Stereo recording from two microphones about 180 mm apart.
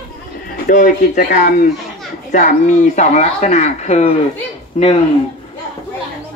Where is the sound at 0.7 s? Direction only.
45° left (ahead or behind).